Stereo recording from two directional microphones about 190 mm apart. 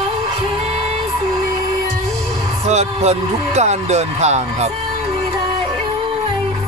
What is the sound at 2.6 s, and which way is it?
Speech, 35° right (ahead or behind).